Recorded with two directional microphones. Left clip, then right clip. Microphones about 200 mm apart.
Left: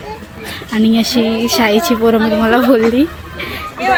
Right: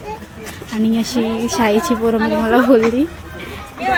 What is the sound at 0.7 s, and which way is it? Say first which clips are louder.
A woman's voice: left 5 dB; 10° right (ahead or behind).